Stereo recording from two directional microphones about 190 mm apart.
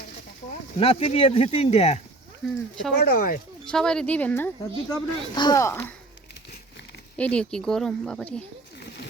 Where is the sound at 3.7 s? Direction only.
5° left (ahead or behind).